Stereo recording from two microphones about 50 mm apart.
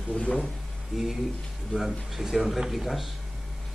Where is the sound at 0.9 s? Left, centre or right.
Centre.